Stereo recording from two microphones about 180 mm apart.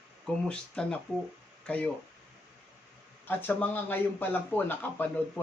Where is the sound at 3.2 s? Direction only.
10° left (ahead or behind).